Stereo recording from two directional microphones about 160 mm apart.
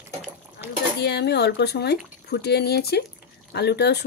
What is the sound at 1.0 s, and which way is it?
Speech, 90° left.